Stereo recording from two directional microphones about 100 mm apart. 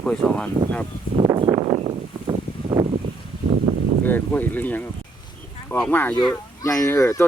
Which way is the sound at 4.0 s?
20° left (ahead or behind).